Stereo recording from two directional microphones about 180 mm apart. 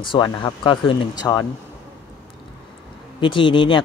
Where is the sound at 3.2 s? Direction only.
30° left (ahead or behind).